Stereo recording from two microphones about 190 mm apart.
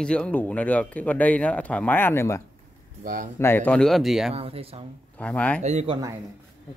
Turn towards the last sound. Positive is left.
turn(degrees=-35)  # may be behind; listen again after turning